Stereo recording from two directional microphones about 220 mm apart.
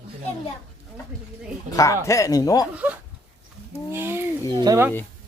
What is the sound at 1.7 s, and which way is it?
Speech, 15° left (ahead or behind).